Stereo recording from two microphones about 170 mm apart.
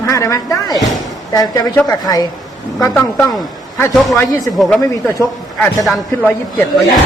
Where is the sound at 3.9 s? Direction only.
Centre (ahead or behind).